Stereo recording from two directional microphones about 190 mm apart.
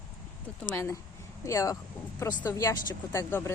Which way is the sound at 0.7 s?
15° left (ahead or behind).